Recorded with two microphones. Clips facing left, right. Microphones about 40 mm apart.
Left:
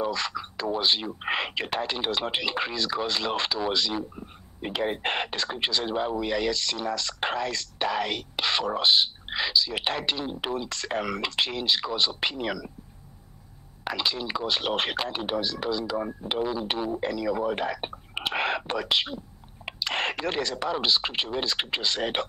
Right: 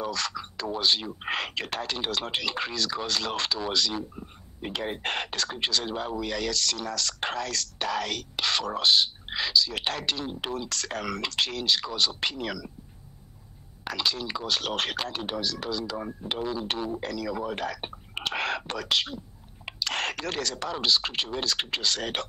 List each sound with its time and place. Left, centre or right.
0.0 s speech: centre
13.8 s speech: centre